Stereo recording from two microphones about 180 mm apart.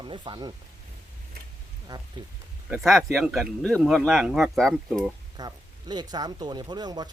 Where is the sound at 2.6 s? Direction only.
Centre (ahead or behind).